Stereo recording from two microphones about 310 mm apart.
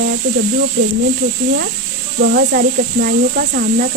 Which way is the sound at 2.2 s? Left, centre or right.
Right.